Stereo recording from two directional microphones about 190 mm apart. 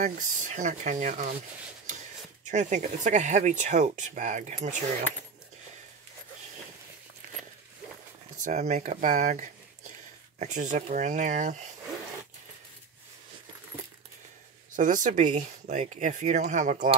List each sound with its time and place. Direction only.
0.0 s speech: 40° right (ahead or behind)
2.4 s speech: 40° right (ahead or behind)
8.5 s speech: 35° right (ahead or behind)
14.8 s speech: 45° right (ahead or behind)